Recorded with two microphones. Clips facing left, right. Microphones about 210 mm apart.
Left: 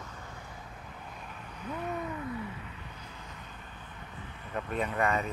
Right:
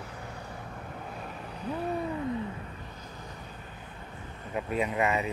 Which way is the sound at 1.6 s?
35° right (ahead or behind).